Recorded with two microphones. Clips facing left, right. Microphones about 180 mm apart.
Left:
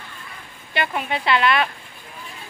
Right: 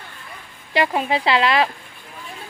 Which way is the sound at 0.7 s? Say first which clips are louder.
Right 5 dB; 30° right (ahead or behind).